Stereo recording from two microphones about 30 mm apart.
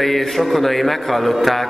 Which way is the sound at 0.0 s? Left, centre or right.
Centre.